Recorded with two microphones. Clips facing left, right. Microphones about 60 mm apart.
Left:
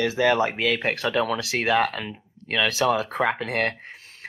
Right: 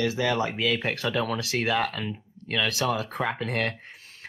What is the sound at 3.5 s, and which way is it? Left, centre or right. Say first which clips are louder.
Speech: left 3 dB; left.